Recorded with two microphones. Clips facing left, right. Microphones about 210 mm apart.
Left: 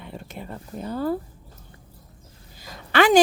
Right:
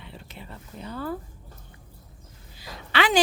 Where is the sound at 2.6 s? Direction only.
45° left (ahead or behind).